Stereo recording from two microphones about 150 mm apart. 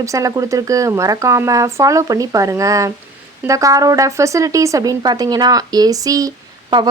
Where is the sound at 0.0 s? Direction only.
20° right (ahead or behind).